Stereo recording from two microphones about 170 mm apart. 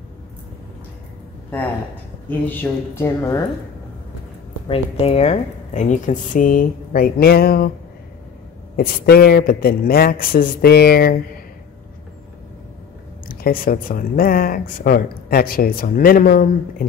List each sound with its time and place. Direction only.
2.2 s speech: 10° left (ahead or behind)
4.6 s speech: 35° left (ahead or behind); by 7.7 s 65° left (ahead or behind)
8.7 s speech: 65° left (ahead or behind)
13.3 s speech: 60° left (ahead or behind)